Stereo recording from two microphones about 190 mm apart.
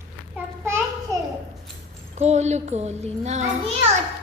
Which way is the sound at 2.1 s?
35° right (ahead or behind).